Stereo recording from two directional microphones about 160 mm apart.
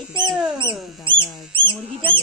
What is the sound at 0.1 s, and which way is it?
Mouse, 25° right (ahead or behind).